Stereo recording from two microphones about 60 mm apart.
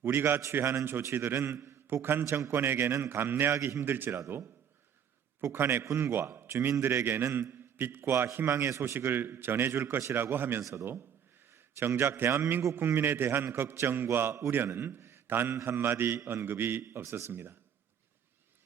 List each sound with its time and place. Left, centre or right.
0.0 s a man's voice: right
5.4 s a man's voice: right
5.8 s a man's voice: right
10.6 s a man's voice: right
11.5 s a man's voice: right